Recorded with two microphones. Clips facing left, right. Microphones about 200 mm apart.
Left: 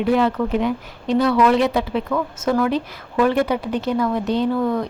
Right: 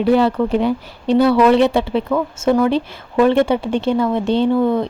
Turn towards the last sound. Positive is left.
turn(degrees=-25)  # may be behind; listen again after turning